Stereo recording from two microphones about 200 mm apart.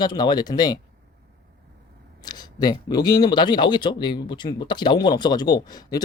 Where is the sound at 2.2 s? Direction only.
20° left (ahead or behind).